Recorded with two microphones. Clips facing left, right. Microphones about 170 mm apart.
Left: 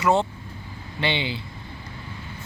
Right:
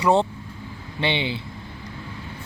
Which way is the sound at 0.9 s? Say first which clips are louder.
Right 2 dB; 20° right (ahead or behind).